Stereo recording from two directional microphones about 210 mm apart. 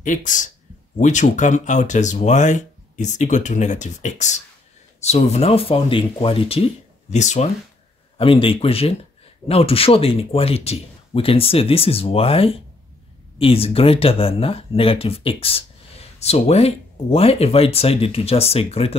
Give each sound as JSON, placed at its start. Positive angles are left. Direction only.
{"t": 0.0, "sound": "speech", "side_deg": 35}